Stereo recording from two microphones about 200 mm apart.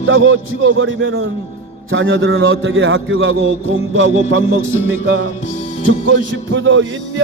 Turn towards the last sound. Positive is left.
turn(degrees=-75)  # may be behind; listen again after turning